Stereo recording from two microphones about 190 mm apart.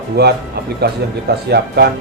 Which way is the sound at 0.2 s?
55° right (ahead or behind).